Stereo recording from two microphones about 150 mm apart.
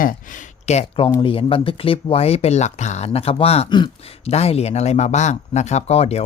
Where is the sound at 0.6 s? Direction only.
50° left (ahead or behind).